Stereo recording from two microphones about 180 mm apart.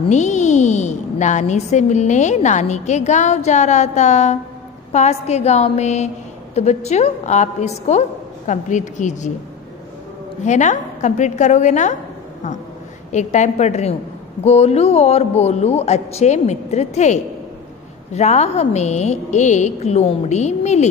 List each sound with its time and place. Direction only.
0.1 s a woman's voice: 40° left (ahead or behind)
10.4 s a woman's voice: 40° left (ahead or behind)
13.1 s a woman's voice: 40° left (ahead or behind)